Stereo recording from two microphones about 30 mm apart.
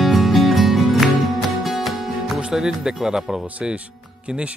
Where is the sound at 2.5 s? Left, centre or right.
Centre.